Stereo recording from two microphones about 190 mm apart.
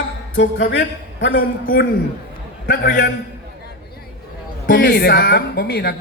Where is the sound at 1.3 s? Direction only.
50° left (ahead or behind).